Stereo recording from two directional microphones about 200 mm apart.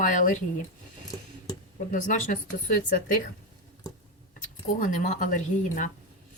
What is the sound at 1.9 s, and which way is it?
Speech, 40° left (ahead or behind).